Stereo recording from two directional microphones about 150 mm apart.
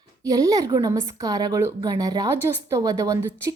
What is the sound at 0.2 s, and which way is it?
A woman's voice, 25° right (ahead or behind).